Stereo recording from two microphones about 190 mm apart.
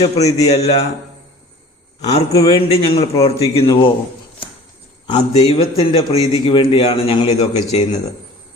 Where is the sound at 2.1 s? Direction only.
30° left (ahead or behind).